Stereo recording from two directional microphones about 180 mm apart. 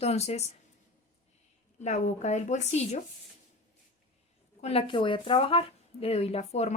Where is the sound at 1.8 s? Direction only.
40° left (ahead or behind).